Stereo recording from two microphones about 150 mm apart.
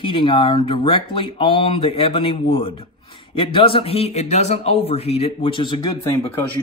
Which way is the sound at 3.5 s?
35° left (ahead or behind).